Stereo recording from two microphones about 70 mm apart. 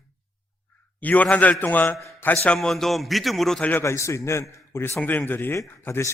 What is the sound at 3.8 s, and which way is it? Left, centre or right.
A man's voice, left.